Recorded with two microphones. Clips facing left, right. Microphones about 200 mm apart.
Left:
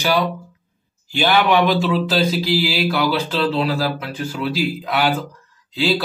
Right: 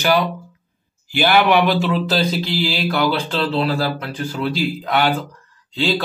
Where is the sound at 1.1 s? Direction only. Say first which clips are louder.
Right 1 dB; 5° right (ahead or behind).